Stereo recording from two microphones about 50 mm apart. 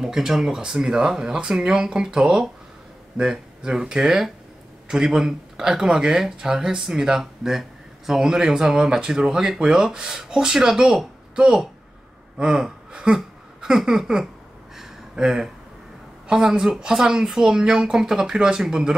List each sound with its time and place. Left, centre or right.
0.0 s speech: centre
12.4 s a sound: centre
16.3 s speech: centre